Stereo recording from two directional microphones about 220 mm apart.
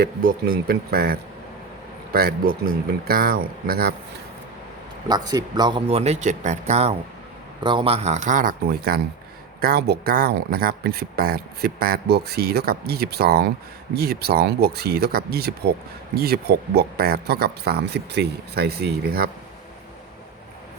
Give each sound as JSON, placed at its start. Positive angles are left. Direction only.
{"t": 0.0, "sound": "speech", "side_deg": -45}
{"t": 5.0, "sound": "speech", "side_deg": -15}